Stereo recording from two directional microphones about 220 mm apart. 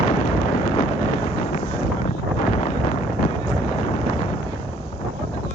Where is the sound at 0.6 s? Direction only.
65° right (ahead or behind).